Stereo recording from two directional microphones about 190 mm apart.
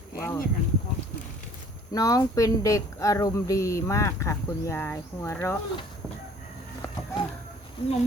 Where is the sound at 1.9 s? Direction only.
20° left (ahead or behind).